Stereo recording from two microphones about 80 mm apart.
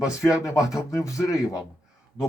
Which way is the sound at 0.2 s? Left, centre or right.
Left.